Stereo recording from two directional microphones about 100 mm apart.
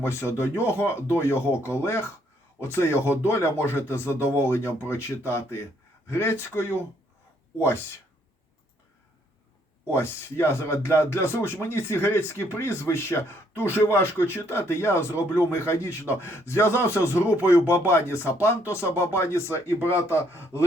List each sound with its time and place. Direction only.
0.0 s speech: 25° left (ahead or behind)
9.9 s speech: 25° left (ahead or behind)
17.2 s speech: 15° right (ahead or behind)
17.7 s speech: 25° left (ahead or behind)